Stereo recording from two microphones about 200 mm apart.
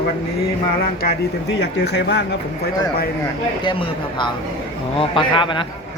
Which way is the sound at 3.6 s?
25° left (ahead or behind).